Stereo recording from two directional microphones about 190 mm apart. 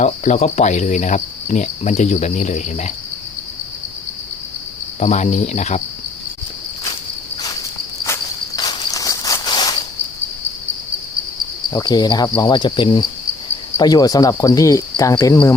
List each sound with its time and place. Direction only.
0.0 s cricket: 35° left (ahead or behind)
4.9 s cricket: 40° left (ahead or behind)
8.0 s cricket: 15° left (ahead or behind)
11.7 s cricket: 20° left (ahead or behind)